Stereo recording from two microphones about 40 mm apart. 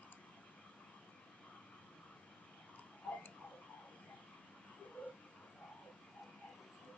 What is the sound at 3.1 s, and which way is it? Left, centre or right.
Tick-tock, left.